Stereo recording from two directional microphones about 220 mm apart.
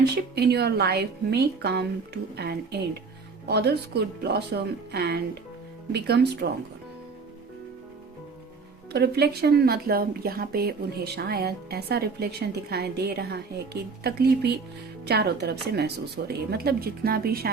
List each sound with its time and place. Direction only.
0.0 s speech: 50° right (ahead or behind)
8.9 s speech: 45° right (ahead or behind)